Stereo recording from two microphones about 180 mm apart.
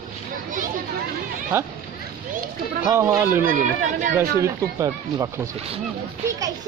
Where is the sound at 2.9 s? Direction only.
15° right (ahead or behind).